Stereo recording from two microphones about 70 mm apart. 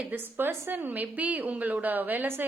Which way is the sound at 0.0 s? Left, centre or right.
Right.